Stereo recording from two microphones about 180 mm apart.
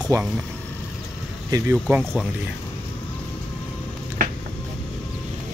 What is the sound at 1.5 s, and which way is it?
Speech, 10° right (ahead or behind).